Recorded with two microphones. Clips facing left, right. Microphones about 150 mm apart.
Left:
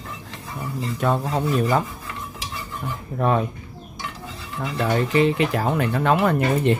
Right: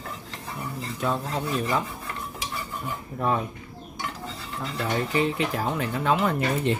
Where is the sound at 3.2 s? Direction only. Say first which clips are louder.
Left 5 dB; 75° left (ahead or behind).